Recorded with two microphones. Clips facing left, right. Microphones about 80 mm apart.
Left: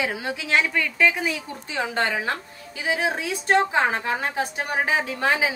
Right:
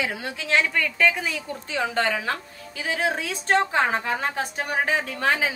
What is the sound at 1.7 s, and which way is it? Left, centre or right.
A woman's voice, left.